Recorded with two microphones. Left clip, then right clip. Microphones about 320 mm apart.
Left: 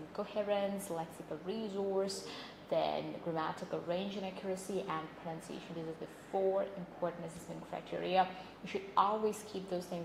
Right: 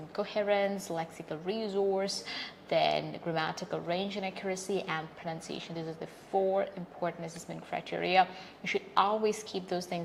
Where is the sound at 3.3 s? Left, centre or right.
Right.